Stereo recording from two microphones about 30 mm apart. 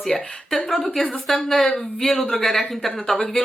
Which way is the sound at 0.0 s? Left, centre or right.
Centre.